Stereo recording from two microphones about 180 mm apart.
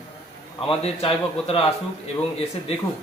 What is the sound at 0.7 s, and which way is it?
Speech, 30° left (ahead or behind).